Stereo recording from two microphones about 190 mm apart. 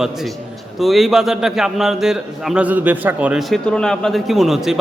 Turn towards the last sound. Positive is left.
turn(degrees=0)  # may be behind; listen again after turning